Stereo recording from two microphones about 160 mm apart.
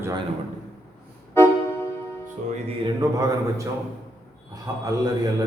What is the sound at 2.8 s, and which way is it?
Speech, 25° right (ahead or behind).